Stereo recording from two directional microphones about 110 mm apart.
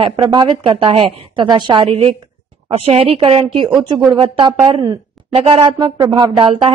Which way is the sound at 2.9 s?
55° right (ahead or behind).